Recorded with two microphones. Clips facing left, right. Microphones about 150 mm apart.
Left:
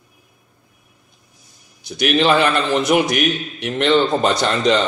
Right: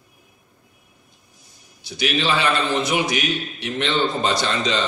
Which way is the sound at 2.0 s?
55° left (ahead or behind).